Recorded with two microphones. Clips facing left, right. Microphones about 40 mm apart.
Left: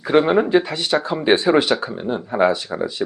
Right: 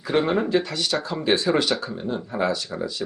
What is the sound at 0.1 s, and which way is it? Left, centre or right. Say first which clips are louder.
Speech: left 6 dB; left.